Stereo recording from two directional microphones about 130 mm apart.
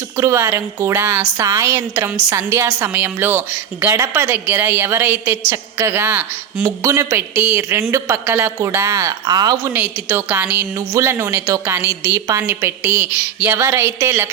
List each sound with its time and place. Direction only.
0.2 s a woman's voice: 25° right (ahead or behind)
9.7 s a woman's voice: 15° right (ahead or behind)